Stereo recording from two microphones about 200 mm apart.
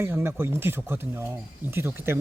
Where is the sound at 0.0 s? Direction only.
10° right (ahead or behind).